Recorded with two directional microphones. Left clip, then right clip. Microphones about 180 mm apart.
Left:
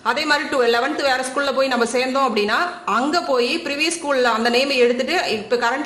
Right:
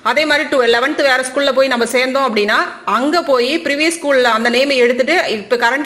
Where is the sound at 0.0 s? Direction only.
20° right (ahead or behind).